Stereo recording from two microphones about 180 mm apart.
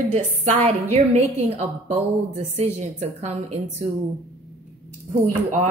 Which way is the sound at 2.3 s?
35° right (ahead or behind).